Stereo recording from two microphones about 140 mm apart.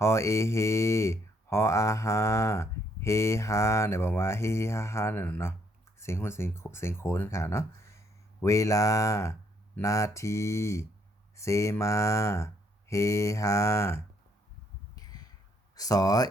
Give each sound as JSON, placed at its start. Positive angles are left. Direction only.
{"t": 0.0, "sound": "speech", "side_deg": 20}
{"t": 14.9, "sound": "a sound", "side_deg": 25}
{"t": 15.7, "sound": "speech", "side_deg": 25}